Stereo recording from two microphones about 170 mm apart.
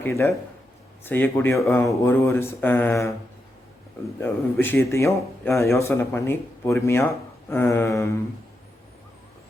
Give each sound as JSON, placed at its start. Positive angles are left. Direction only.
{"t": 0.0, "sound": "speech", "side_deg": 15}
{"t": 4.2, "sound": "speech", "side_deg": 15}